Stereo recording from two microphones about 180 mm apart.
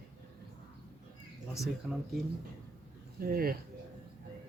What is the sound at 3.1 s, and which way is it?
Speech, 55° right (ahead or behind).